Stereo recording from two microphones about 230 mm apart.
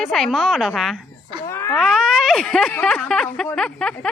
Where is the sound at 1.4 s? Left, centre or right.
Centre.